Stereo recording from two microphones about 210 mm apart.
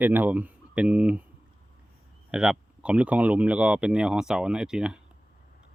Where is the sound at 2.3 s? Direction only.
5° right (ahead or behind).